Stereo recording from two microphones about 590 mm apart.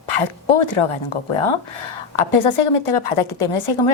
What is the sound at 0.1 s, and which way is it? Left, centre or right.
A woman's voice, left.